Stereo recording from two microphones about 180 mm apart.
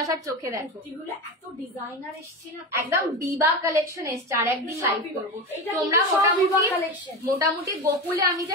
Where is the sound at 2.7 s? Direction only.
15° right (ahead or behind).